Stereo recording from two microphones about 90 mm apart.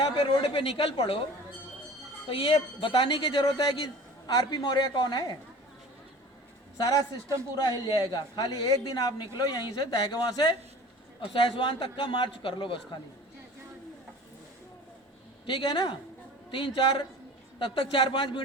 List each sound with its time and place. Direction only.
0.4 s a woman's voice: 85° left
2.2 s a man's voice: 70° left (ahead or behind); by 5.4 s 55° left (ahead or behind)
6.7 s a man's voice: 45° left (ahead or behind)
11.2 s a man's voice: 70° left (ahead or behind)
15.4 s a man's voice: 60° left (ahead or behind)